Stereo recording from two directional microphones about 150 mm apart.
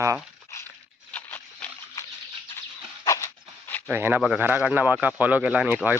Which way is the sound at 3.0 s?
20° left (ahead or behind).